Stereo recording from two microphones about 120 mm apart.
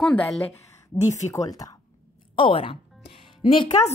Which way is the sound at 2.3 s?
45° left (ahead or behind).